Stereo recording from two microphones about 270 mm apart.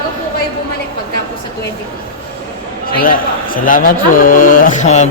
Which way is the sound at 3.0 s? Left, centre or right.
Left.